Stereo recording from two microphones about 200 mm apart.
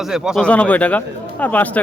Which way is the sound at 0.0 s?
Centre (ahead or behind).